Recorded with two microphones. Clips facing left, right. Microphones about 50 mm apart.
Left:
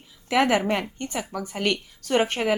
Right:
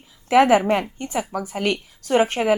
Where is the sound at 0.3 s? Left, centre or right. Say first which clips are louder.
Right 6 dB; centre.